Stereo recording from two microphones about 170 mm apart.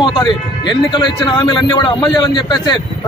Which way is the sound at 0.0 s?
25° left (ahead or behind).